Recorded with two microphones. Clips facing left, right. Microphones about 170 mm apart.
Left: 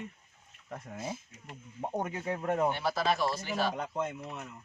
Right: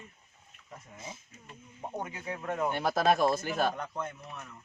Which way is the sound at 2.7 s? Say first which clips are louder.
Right 3 dB; 50° right (ahead or behind).